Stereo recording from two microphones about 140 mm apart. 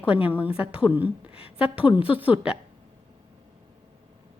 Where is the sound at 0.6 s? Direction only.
40° left (ahead or behind).